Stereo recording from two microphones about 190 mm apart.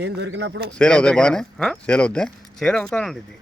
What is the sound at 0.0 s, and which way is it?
Speech, 65° right (ahead or behind).